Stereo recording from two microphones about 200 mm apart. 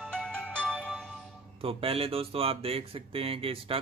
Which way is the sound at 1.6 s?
30° right (ahead or behind).